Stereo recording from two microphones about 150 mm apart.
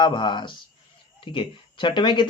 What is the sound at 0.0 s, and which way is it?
Speech, 30° left (ahead or behind).